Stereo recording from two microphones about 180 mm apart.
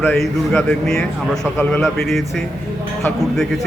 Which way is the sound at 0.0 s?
5° left (ahead or behind).